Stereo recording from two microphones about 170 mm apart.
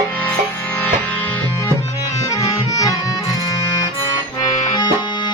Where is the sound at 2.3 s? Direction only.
20° left (ahead or behind).